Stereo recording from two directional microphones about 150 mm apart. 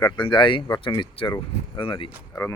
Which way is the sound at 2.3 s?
15° left (ahead or behind).